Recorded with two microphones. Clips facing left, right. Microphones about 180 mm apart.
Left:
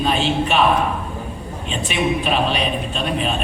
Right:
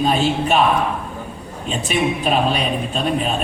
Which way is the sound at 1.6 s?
45° right (ahead or behind).